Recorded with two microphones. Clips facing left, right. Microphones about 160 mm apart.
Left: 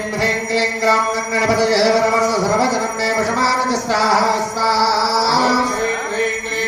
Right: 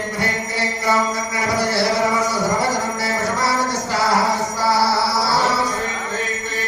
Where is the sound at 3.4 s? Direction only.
90° left.